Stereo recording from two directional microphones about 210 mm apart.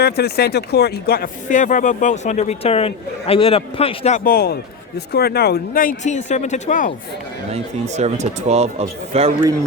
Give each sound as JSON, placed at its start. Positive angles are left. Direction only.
{"t": 0.0, "sound": "speech", "side_deg": 50}
{"t": 4.2, "sound": "a man's voice", "side_deg": 45}
{"t": 7.5, "sound": "speech", "side_deg": -30}